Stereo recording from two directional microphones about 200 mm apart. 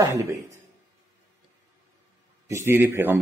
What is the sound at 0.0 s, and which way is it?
Speech, 15° right (ahead or behind).